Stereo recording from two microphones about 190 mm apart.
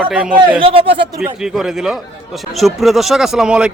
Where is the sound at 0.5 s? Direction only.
30° right (ahead or behind).